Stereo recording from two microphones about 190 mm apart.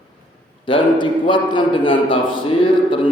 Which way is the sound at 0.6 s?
25° left (ahead or behind).